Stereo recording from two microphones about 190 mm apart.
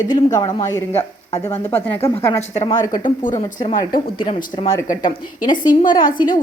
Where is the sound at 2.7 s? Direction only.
20° left (ahead or behind).